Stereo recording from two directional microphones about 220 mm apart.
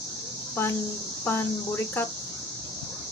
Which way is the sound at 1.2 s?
10° left (ahead or behind).